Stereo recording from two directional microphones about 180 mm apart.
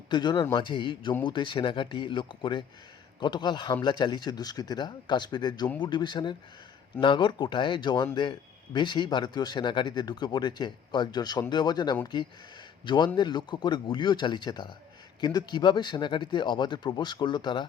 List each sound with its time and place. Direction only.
0.1 s speech: 25° left (ahead or behind)